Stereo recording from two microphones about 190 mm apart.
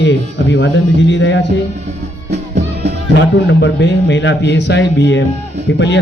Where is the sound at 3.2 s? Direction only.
70° left (ahead or behind).